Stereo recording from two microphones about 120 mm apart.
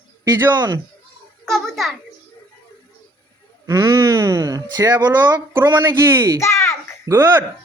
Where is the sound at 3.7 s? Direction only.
25° right (ahead or behind).